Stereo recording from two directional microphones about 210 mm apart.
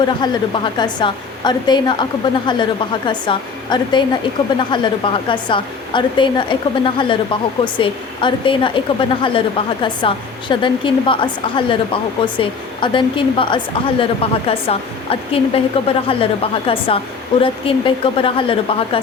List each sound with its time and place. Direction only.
0.0 s a woman's voice: 20° left (ahead or behind)